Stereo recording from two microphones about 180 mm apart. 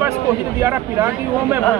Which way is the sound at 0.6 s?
15° right (ahead or behind).